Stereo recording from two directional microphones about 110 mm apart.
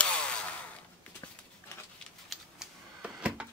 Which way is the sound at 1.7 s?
20° left (ahead or behind).